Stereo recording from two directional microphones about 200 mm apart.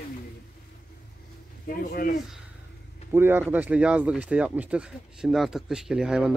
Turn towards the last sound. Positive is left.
turn(degrees=-5)  # may be behind; listen again after turning